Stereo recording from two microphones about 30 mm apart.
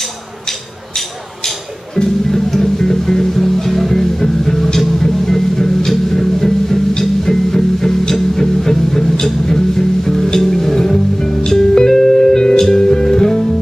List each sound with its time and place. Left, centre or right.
0.5 s music: centre
2.0 s speech: centre
2.5 s music: centre